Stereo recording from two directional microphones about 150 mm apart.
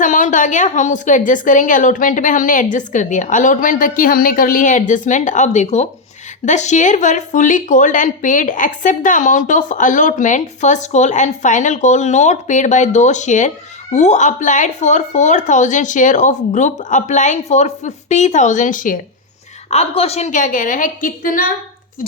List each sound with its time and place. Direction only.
0.0 s a woman's voice: 60° left (ahead or behind)
19.7 s a woman's voice: 40° left (ahead or behind); by 21.5 s 65° left (ahead or behind)